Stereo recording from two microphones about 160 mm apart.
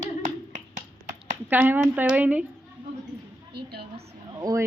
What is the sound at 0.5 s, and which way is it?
Finger snapping, 50° right (ahead or behind).